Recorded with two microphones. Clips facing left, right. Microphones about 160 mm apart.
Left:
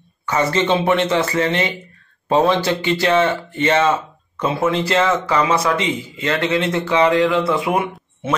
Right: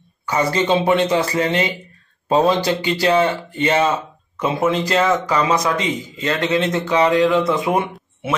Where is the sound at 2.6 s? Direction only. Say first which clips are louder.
Even; 15° right (ahead or behind).